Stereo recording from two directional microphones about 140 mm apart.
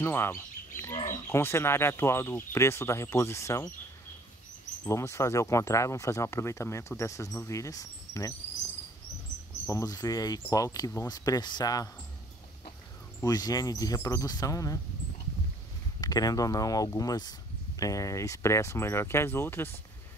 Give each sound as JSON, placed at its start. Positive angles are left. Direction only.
{"t": 0.0, "sound": "speech", "side_deg": 15}
{"t": 4.8, "sound": "speech", "side_deg": 20}
{"t": 9.7, "sound": "speech", "side_deg": 25}
{"t": 13.2, "sound": "speech", "side_deg": 25}
{"t": 16.0, "sound": "speech", "side_deg": 25}